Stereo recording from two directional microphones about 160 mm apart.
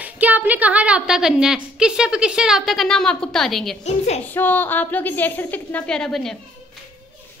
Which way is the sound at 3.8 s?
45° left (ahead or behind).